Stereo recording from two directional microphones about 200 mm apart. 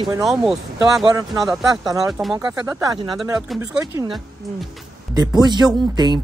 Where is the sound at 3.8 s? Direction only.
15° right (ahead or behind).